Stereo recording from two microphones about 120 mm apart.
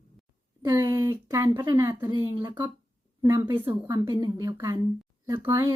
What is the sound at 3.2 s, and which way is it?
Speech, 25° right (ahead or behind).